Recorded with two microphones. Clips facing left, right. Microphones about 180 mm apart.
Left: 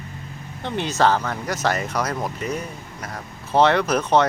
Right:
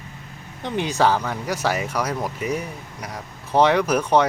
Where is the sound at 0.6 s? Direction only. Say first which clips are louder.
Even; 15° right (ahead or behind).